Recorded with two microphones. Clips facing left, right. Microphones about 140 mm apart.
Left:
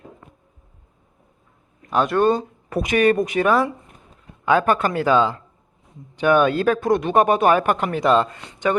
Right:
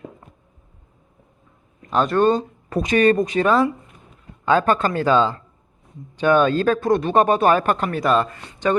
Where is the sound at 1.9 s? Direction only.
10° left (ahead or behind).